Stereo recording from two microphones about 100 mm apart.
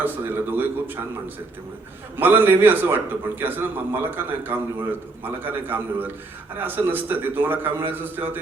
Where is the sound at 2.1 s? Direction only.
20° right (ahead or behind).